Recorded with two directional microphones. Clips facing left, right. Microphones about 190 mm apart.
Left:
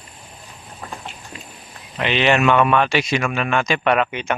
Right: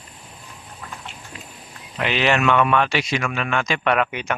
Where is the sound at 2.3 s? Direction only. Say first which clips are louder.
Left 2 dB; 20° left (ahead or behind).